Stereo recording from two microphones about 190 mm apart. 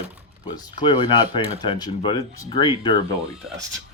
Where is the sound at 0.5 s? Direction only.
20° left (ahead or behind).